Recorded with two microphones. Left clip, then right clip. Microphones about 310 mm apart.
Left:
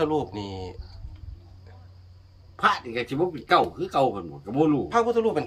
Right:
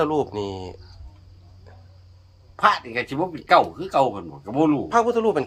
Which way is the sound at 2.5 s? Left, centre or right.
Centre.